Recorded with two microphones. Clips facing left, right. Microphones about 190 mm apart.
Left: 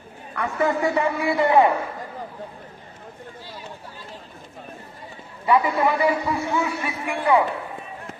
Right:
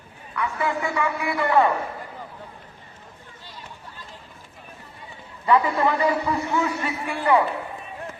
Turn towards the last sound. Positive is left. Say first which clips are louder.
# left 1 dB
turn(degrees=10)  # may be behind; listen again after turning